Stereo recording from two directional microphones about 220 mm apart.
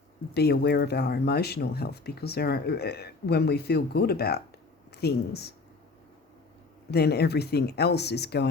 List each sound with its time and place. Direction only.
0.3 s speech: 45° left (ahead or behind)
6.9 s speech: 45° left (ahead or behind)